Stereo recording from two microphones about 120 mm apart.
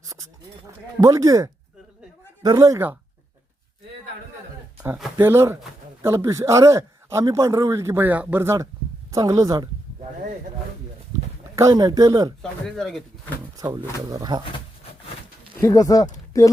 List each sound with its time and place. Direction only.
1.0 s a man's voice: 25° right (ahead or behind)
5.2 s a man's voice: 20° right (ahead or behind)
11.5 s speech: 30° right (ahead or behind)
12.4 s speech: 5° left (ahead or behind)
14.1 s speech: 35° right (ahead or behind)
15.6 s speech: 30° left (ahead or behind)